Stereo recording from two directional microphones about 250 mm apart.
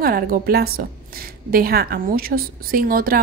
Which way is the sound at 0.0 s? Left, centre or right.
Right.